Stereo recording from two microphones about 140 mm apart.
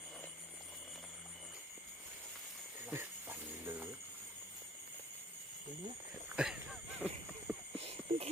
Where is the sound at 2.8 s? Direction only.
15° right (ahead or behind).